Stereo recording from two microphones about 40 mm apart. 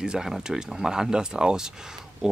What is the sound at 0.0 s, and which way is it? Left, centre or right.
Speech, centre.